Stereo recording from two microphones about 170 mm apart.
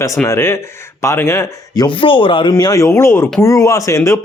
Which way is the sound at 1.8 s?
30° left (ahead or behind).